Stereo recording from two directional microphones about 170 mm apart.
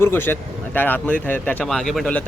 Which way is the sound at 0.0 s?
15° left (ahead or behind).